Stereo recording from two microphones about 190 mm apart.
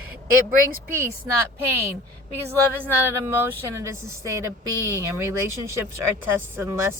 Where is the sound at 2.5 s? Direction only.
10° right (ahead or behind).